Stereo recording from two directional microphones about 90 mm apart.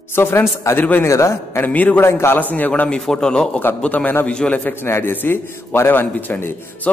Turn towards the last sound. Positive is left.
turn(degrees=25)  # may be behind; listen again after turning